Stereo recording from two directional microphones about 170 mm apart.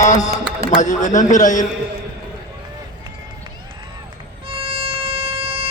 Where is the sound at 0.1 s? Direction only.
20° left (ahead or behind).